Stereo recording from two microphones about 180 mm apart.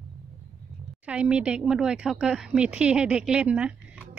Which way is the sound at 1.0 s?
5° right (ahead or behind).